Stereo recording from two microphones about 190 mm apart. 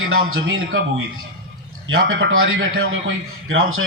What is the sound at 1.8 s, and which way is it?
A man's voice, 90° right.